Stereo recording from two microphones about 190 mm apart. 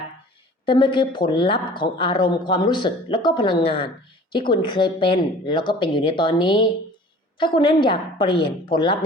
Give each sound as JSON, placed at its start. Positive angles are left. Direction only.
{"t": 0.6, "sound": "speech", "side_deg": 25}